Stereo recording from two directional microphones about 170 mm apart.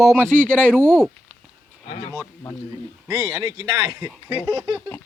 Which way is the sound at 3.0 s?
15° right (ahead or behind).